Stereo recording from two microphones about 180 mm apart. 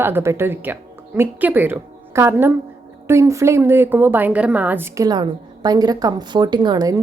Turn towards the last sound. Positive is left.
turn(degrees=-20)  # may be behind; listen again after turning